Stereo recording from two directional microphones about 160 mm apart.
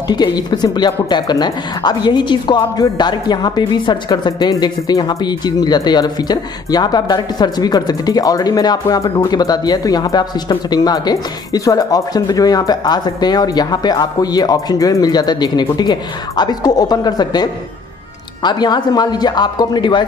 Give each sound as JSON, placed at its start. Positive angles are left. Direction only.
{"t": 0.1, "sound": "a woman's voice", "side_deg": 25}